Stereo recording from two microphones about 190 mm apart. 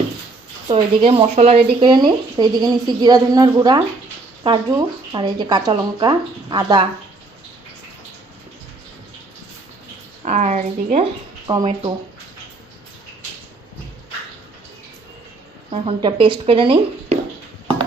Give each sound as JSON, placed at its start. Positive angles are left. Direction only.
{"t": 0.7, "sound": "speech", "side_deg": -30}
{"t": 10.2, "sound": "speech", "side_deg": -35}
{"t": 15.7, "sound": "speech", "side_deg": -30}